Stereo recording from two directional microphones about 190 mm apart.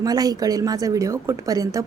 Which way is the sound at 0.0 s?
20° right (ahead or behind).